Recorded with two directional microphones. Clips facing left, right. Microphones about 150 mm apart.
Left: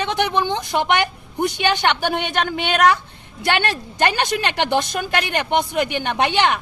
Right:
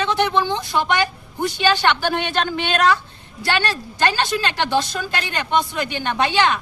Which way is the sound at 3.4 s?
20° left (ahead or behind).